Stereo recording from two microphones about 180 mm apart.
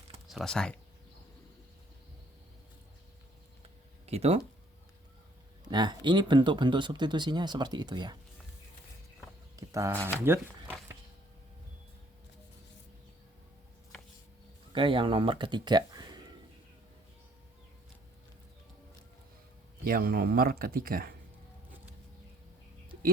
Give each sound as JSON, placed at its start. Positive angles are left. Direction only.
{"t": 0.3, "sound": "speech", "side_deg": 0}
{"t": 4.0, "sound": "speech", "side_deg": -35}
{"t": 5.7, "sound": "speech", "side_deg": -25}
{"t": 9.6, "sound": "speech", "side_deg": -15}
{"t": 14.7, "sound": "speech", "side_deg": -30}
{"t": 19.8, "sound": "speech", "side_deg": -55}